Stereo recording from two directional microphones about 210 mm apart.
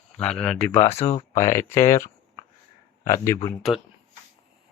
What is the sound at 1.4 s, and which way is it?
Speech, 15° left (ahead or behind).